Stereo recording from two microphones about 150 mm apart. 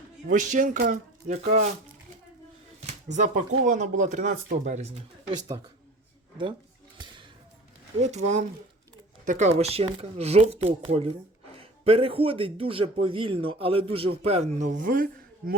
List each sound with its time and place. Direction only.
0.3 s speech: 60° right (ahead or behind)
2.8 s speech: 55° right (ahead or behind)
7.9 s a man's voice: 45° right (ahead or behind); by 15.5 s 70° right (ahead or behind)